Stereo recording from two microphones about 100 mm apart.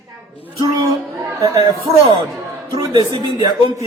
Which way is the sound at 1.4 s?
40° right (ahead or behind).